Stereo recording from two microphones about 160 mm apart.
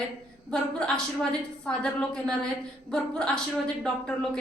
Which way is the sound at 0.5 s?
5° left (ahead or behind).